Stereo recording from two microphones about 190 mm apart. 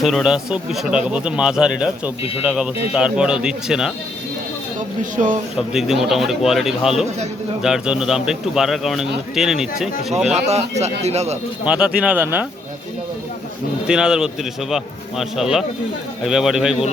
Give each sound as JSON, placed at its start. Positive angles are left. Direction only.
{"t": 0.0, "sound": "a man's voice", "side_deg": 0}
{"t": 5.1, "sound": "a man's voice", "side_deg": -45}
{"t": 5.5, "sound": "a man's voice", "side_deg": 0}
{"t": 10.2, "sound": "speech", "side_deg": -35}
{"t": 11.6, "sound": "a man's voice", "side_deg": -5}
{"t": 13.8, "sound": "a man's voice", "side_deg": -5}